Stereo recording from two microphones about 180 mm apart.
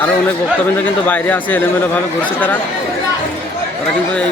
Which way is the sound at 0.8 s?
10° left (ahead or behind).